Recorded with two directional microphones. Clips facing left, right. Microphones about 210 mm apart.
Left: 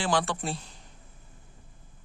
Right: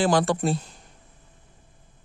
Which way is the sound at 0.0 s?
40° right (ahead or behind).